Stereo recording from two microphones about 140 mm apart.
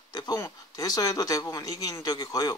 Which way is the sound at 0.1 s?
25° left (ahead or behind).